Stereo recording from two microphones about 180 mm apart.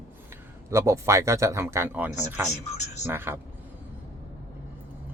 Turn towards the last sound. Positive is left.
turn(degrees=-10)  # may be behind; listen again after turning